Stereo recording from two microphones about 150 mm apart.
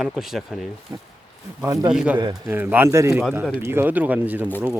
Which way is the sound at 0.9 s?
20° right (ahead or behind).